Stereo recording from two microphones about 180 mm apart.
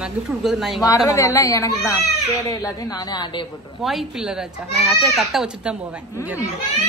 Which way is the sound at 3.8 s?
Centre (ahead or behind).